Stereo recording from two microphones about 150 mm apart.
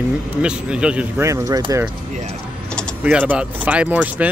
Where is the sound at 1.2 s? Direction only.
20° right (ahead or behind).